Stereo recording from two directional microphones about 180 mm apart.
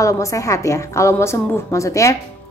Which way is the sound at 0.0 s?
20° left (ahead or behind).